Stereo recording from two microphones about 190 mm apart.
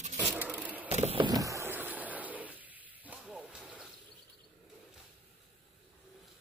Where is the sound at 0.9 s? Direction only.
30° right (ahead or behind); by 3.9 s 5° right (ahead or behind).